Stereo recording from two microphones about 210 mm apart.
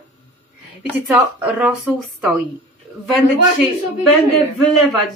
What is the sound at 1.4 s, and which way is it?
Speech, 5° right (ahead or behind).